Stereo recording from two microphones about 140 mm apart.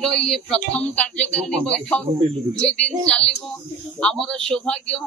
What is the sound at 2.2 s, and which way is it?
Speech, 35° right (ahead or behind).